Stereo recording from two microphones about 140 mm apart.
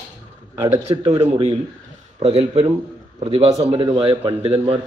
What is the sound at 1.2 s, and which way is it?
A man's voice, 45° right (ahead or behind).